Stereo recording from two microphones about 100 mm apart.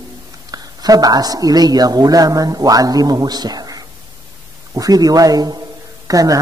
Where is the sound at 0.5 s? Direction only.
40° right (ahead or behind).